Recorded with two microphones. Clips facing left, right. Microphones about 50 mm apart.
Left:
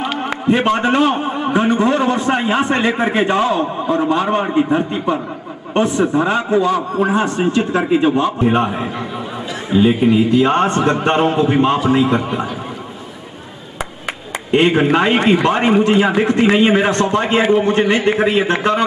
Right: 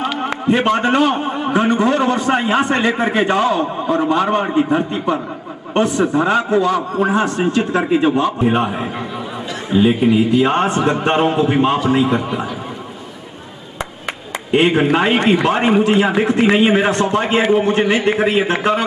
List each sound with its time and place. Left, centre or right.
0.2 s a man's voice: centre
14.5 s a man's voice: centre